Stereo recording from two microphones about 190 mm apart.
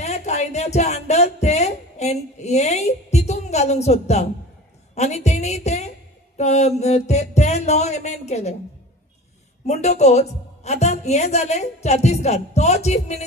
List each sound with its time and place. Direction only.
0.0 s a woman's voice: 35° left (ahead or behind)
9.7 s a woman's voice: 35° left (ahead or behind)